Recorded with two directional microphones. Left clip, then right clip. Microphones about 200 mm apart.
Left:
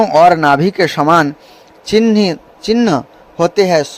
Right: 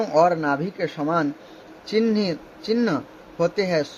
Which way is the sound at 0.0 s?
45° left (ahead or behind).